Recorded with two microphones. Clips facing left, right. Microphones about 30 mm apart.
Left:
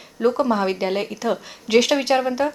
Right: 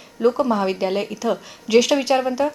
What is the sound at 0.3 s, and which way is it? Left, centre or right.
A woman's voice, centre.